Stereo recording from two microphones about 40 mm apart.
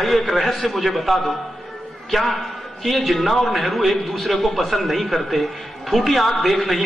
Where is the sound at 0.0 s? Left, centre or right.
Centre.